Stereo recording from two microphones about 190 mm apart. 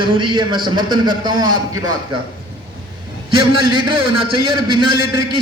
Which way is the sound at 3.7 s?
25° right (ahead or behind).